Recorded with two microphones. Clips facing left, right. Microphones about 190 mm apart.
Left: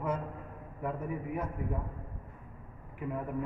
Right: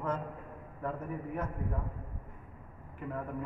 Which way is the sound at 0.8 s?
10° left (ahead or behind).